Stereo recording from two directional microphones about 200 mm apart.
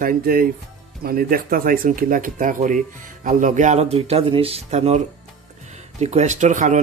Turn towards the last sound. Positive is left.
turn(degrees=-40)  # may be behind; listen again after turning